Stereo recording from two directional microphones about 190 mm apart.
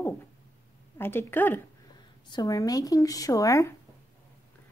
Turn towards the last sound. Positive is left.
turn(degrees=15)  # may be behind; listen again after turning